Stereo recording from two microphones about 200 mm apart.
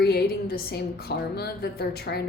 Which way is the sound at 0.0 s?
50° left (ahead or behind).